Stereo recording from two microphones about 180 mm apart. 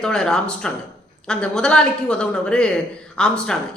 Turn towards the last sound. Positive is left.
turn(degrees=5)  # may be behind; listen again after turning